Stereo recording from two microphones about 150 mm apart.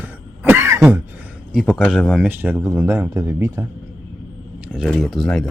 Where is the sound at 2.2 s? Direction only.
15° right (ahead or behind).